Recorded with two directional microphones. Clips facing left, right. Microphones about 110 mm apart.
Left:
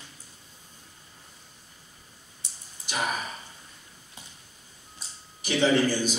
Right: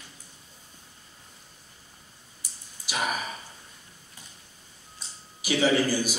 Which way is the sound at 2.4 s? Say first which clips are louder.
Even; 25° left (ahead or behind).